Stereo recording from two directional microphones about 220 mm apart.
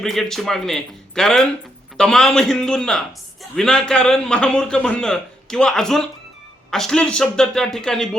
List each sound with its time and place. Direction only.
0.0 s a man's voice: centre (ahead or behind)